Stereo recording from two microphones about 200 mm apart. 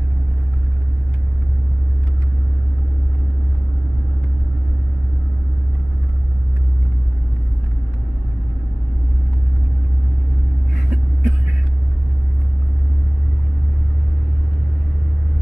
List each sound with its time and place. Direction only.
10.7 s vehicle: 35° right (ahead or behind)